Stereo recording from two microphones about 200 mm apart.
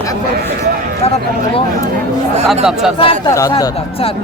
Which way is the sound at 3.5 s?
30° left (ahead or behind).